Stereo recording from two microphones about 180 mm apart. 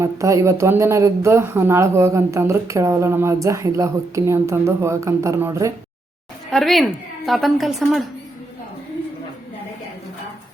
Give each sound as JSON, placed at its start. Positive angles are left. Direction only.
{"t": 0.0, "sound": "a woman's voice", "side_deg": -15}
{"t": 6.5, "sound": "a woman's voice", "side_deg": 0}